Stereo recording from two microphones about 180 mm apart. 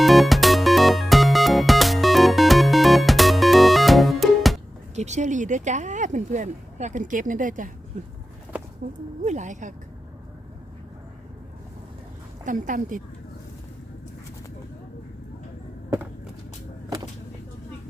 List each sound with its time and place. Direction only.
0.0 s music: centre (ahead or behind)
4.9 s speech: 40° right (ahead or behind)
9.2 s speech: 40° right (ahead or behind)
12.5 s speech: 45° right (ahead or behind)